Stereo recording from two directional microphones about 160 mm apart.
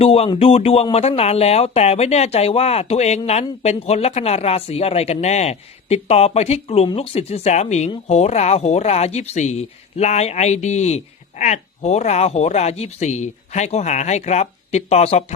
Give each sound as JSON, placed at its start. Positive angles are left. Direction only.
{"t": 0.0, "sound": "speech", "side_deg": 40}